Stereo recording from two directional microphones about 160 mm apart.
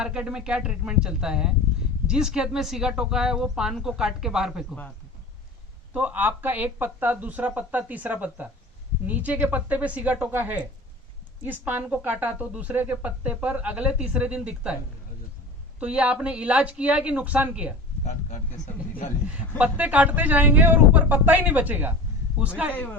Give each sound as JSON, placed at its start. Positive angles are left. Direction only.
{"t": 0.0, "sound": "speech", "side_deg": -5}
{"t": 5.9, "sound": "speech", "side_deg": -10}
{"t": 15.8, "sound": "speech", "side_deg": -5}
{"t": 18.0, "sound": "speech", "side_deg": 50}
{"t": 19.5, "sound": "speech", "side_deg": -10}
{"t": 22.7, "sound": "a man's voice", "side_deg": 10}